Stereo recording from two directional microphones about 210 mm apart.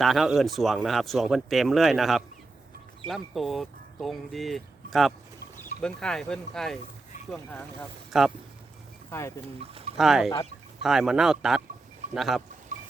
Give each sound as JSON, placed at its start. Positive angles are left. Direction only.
{"t": 0.0, "sound": "speech", "side_deg": 0}
{"t": 9.0, "sound": "speech", "side_deg": 15}
{"t": 10.0, "sound": "speech", "side_deg": 0}